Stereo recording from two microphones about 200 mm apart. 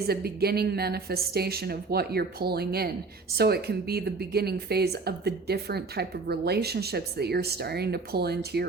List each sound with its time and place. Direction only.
0.1 s speech: 50° right (ahead or behind)